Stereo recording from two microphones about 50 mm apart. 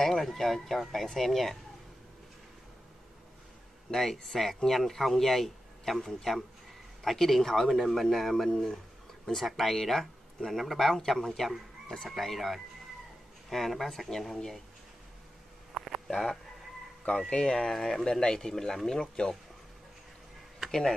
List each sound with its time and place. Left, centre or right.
0.0 s speech: centre
3.9 s speech: centre
15.7 s a sound: centre
16.1 s speech: centre
17.3 s speech: centre
17.6 s speech: centre